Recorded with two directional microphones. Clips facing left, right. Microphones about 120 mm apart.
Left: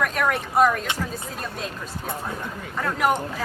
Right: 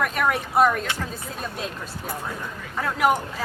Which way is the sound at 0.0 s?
Centre (ahead or behind).